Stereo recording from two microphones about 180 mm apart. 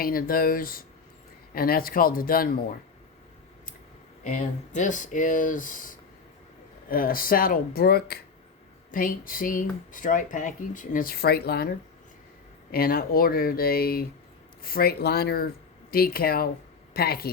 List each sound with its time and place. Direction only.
0.0 s speech: 55° left (ahead or behind)
4.2 s speech: 45° left (ahead or behind); by 11.7 s 60° left (ahead or behind)
12.7 s speech: 55° left (ahead or behind)